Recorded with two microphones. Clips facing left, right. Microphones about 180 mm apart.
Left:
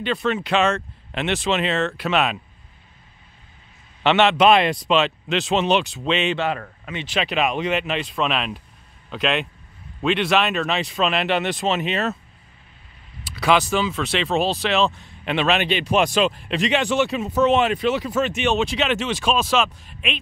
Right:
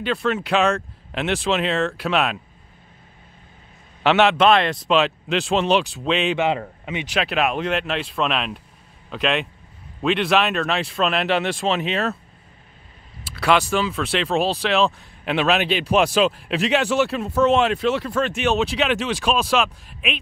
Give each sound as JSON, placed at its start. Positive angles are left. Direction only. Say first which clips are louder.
{"t": 0.0, "sound": "a man's voice", "louder": "even", "side_deg": -5}
{"t": 4.0, "sound": "a man's voice", "louder": "even", "side_deg": 0}
{"t": 6.3, "sound": "speech", "louder": "right 3 dB", "side_deg": -20}
{"t": 7.2, "sound": "a man's voice", "louder": "even", "side_deg": 0}
{"t": 13.3, "sound": "a man's voice", "louder": "even", "side_deg": 0}